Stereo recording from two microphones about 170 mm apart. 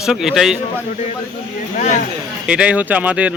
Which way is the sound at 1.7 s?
50° left (ahead or behind).